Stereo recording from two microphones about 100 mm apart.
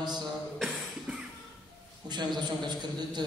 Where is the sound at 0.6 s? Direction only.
Centre (ahead or behind).